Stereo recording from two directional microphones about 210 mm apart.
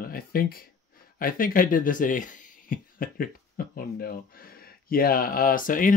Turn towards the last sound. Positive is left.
turn(degrees=40)  # may be behind; listen again after turning